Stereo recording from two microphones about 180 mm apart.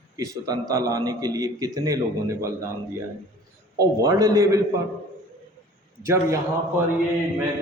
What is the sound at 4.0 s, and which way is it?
Speech, 20° right (ahead or behind).